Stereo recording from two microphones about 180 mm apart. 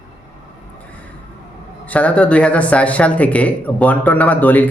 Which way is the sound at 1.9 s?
5° left (ahead or behind).